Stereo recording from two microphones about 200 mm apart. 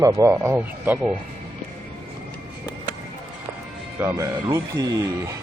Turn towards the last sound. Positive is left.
turn(degrees=-15)  # may be behind; listen again after turning